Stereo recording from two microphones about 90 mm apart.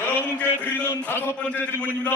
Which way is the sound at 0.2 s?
15° left (ahead or behind).